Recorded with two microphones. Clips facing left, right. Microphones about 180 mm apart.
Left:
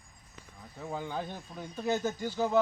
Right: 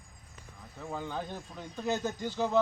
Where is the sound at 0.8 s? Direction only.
10° left (ahead or behind).